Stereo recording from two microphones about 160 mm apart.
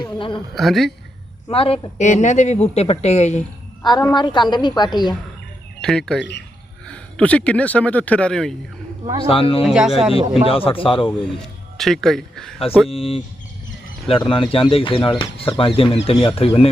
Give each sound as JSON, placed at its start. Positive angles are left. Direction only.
{"t": 0.0, "sound": "a woman's voice", "side_deg": 30}
{"t": 0.5, "sound": "a man's voice", "side_deg": 0}
{"t": 1.5, "sound": "speech", "side_deg": 35}
{"t": 4.1, "sound": "a woman's voice", "side_deg": 30}
{"t": 5.8, "sound": "a man's voice", "side_deg": 5}
{"t": 9.2, "sound": "speech", "side_deg": 35}
{"t": 9.6, "sound": "a man's voice", "side_deg": -5}
{"t": 10.4, "sound": "speech", "side_deg": 35}
{"t": 11.8, "sound": "a man's voice", "side_deg": 0}
{"t": 12.9, "sound": "speech", "side_deg": 35}